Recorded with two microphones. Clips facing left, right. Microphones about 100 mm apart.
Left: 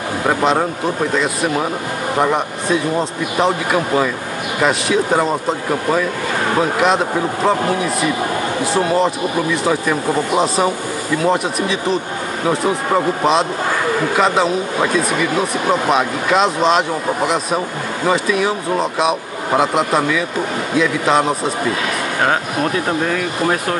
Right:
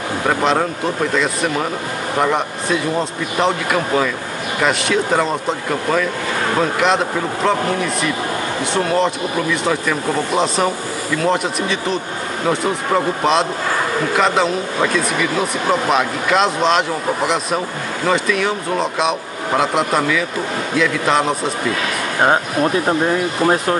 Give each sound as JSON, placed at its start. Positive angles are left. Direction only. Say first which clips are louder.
{"t": 0.3, "sound": "speech", "louder": "left 1 dB", "side_deg": 5}
{"t": 8.7, "sound": "speech", "louder": "left 1 dB", "side_deg": 5}
{"t": 18.0, "sound": "speech", "louder": "left 1 dB", "side_deg": 5}
{"t": 22.2, "sound": "speech", "louder": "right 3 dB", "side_deg": -25}